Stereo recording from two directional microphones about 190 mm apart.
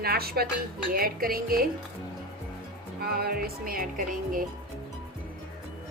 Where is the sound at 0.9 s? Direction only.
50° right (ahead or behind).